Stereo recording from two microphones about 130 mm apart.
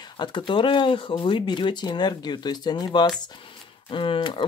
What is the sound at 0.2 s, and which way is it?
Speech, 35° left (ahead or behind).